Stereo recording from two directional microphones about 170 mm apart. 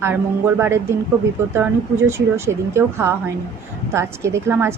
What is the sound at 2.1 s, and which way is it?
A woman's voice, 15° right (ahead or behind).